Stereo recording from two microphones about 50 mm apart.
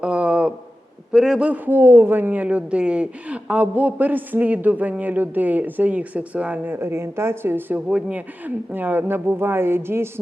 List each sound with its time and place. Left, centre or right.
0.0 s a sound: right
1.1 s a man's voice: centre
1.6 s speech: right
6.7 s speech: right
7.9 s speech: right